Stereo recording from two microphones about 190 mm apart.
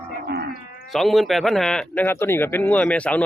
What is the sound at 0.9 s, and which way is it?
A man's voice, centre (ahead or behind).